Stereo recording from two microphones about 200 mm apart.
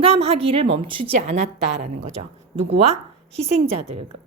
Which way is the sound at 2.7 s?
30° right (ahead or behind).